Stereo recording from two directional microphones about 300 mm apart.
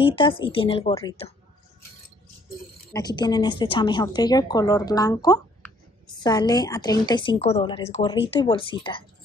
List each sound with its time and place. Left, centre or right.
0.0 s a woman's voice: centre
2.9 s a woman's voice: centre